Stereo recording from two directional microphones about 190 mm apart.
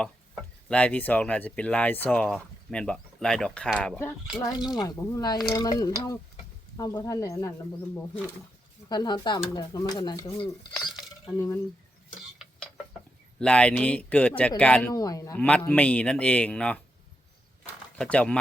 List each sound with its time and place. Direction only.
0.7 s speech: 5° left (ahead or behind)
8.9 s speech: 20° left (ahead or behind)
10.4 s dishes: centre (ahead or behind)
11.3 s speech: 15° left (ahead or behind)
12.4 s tick-tock: centre (ahead or behind)
13.4 s speech: 5° left (ahead or behind)
14.9 s speech: 20° left (ahead or behind)
17.6 s a sound: 5° left (ahead or behind)